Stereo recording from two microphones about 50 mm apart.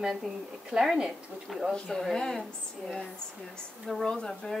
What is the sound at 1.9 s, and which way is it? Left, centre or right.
Speech, centre.